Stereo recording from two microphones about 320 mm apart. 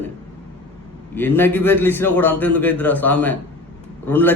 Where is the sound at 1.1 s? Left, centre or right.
Centre.